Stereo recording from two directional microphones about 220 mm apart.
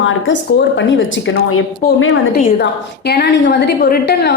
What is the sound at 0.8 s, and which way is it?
Speech, 60° left (ahead or behind).